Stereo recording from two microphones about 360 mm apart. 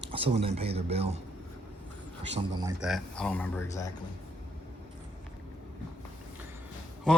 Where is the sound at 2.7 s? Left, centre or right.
Centre.